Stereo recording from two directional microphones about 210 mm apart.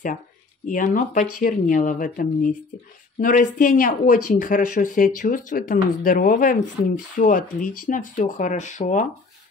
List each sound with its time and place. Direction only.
0.7 s speech: 40° left (ahead or behind)